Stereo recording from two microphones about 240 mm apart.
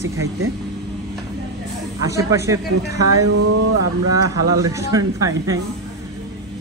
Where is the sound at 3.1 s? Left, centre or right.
Right.